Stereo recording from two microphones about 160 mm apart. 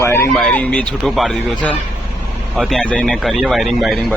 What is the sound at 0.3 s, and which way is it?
A man's voice, 5° left (ahead or behind).